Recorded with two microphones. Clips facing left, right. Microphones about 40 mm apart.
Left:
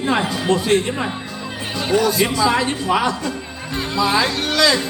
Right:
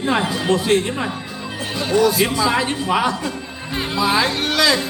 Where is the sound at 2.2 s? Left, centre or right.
Centre.